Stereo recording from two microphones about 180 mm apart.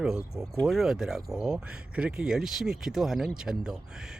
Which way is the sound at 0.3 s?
Centre (ahead or behind).